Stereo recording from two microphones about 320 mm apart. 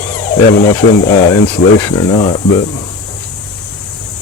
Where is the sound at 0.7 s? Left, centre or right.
Centre.